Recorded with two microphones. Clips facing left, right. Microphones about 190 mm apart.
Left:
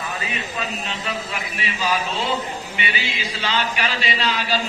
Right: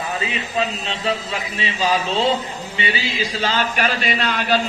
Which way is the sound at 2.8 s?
40° right (ahead or behind).